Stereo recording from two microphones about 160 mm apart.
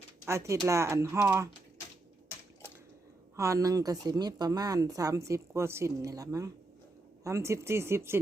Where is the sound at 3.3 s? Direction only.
20° right (ahead or behind).